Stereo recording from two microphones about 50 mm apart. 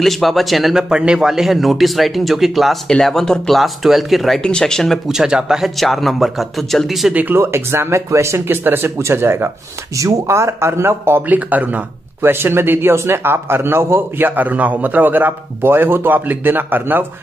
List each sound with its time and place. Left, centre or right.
0.0 s speech: centre
0.7 s speech: centre
4.4 s speech: centre
5.0 s speech: centre
5.8 s speech: centre
7.3 s speech: right
8.5 s speech: right
8.9 s speech: right
9.9 s speech: right
11.2 s a man's voice: right
12.2 s speech: right
14.2 s a man's voice: right